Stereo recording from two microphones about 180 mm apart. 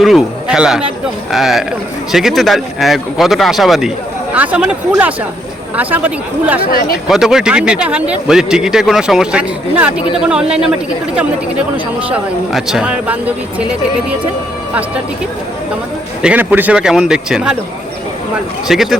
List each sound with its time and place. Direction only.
0.0 s a sound: centre (ahead or behind)
1.3 s a man's voice: centre (ahead or behind)
6.7 s speech: 55° left (ahead or behind)
7.1 s a man's voice: 5° right (ahead or behind)
16.2 s a man's voice: 10° right (ahead or behind)
18.7 s a man's voice: centre (ahead or behind)